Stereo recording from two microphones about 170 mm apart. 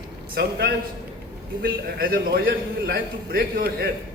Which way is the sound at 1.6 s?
60° right (ahead or behind).